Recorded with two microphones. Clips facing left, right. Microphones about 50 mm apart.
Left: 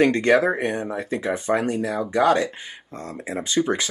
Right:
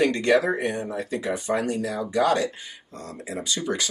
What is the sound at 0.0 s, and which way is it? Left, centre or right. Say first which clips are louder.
Speech: left 3 dB; left.